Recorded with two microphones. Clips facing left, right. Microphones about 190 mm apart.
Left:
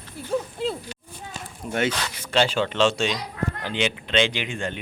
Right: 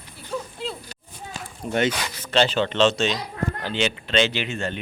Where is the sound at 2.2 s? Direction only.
10° left (ahead or behind).